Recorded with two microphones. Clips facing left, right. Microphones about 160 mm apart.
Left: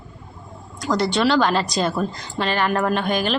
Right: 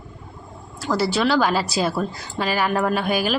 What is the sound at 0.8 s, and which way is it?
A woman's voice, 5° right (ahead or behind).